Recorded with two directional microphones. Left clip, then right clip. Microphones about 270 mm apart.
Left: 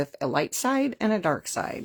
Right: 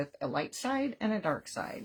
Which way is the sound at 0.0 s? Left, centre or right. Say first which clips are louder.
Left 8 dB; left.